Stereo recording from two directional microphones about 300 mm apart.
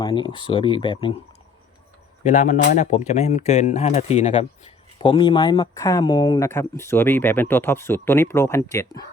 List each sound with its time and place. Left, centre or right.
0.0 s speech: centre
2.2 s speech: left